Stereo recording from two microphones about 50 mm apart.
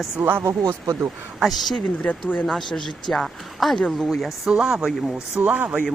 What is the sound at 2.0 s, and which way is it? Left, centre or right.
Speech, left.